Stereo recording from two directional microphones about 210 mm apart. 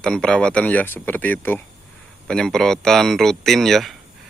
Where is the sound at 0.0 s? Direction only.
5° left (ahead or behind).